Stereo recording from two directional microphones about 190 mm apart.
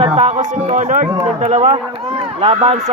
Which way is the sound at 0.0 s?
30° right (ahead or behind).